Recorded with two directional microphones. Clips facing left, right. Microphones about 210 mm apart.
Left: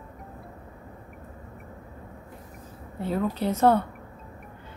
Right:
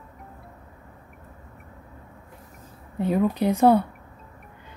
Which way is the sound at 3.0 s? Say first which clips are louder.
Right 5 dB; 15° right (ahead or behind).